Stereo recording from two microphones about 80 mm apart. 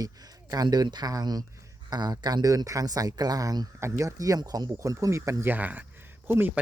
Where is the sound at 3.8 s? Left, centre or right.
Right.